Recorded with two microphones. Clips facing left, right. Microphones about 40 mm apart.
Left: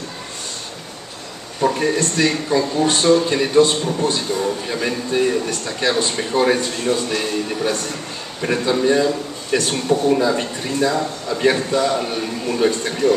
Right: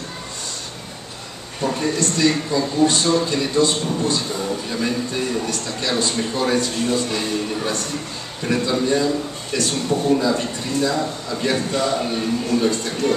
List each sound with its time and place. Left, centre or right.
1.6 s a man's voice: left
8.4 s a man's voice: left
12.4 s a man's voice: left